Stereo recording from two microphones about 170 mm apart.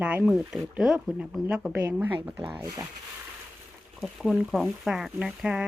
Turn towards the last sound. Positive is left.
turn(degrees=-5)  # may be behind; listen again after turning